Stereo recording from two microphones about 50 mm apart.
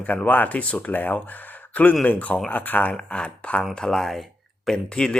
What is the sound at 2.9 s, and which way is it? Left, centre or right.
Speech, centre.